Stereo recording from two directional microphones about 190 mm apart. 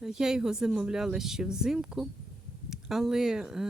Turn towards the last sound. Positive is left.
turn(degrees=-5)  # may be behind; listen again after turning